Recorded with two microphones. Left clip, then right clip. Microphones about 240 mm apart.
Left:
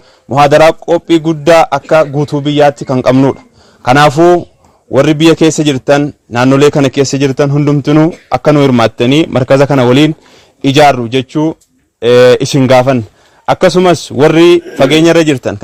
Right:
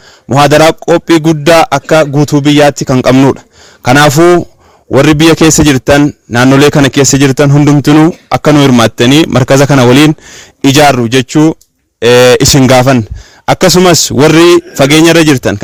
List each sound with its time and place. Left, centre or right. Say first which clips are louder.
0.3 s a man's voice: right 1 dB; right